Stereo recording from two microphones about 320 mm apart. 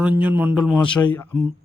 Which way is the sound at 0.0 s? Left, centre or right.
Centre.